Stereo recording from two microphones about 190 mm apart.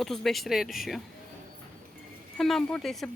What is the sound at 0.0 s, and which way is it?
Speech, centre (ahead or behind).